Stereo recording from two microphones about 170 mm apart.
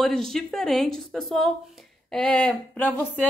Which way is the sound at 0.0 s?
Centre (ahead or behind).